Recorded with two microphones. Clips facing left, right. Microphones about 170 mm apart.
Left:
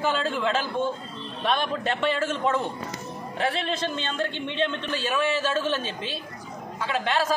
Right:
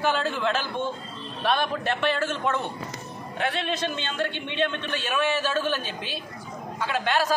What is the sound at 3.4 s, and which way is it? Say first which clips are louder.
Speech: left 1 dB; 30° left (ahead or behind).